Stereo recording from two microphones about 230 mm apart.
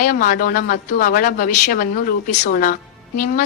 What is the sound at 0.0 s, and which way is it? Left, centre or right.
A woman's voice, left.